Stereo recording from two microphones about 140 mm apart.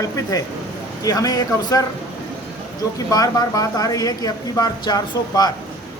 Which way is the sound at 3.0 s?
25° left (ahead or behind).